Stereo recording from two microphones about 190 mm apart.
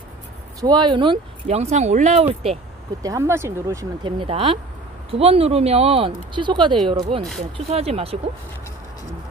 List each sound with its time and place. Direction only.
0.6 s speech: 20° right (ahead or behind)
3.0 s speech: 15° right (ahead or behind); by 8.2 s 30° right (ahead or behind)